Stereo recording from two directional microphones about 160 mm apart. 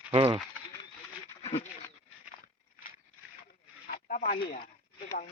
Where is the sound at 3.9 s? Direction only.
55° left (ahead or behind).